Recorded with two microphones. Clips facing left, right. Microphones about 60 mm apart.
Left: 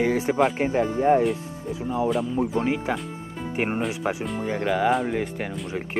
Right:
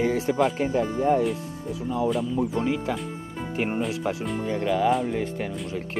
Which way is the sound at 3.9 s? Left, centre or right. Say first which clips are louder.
Left 1 dB; centre.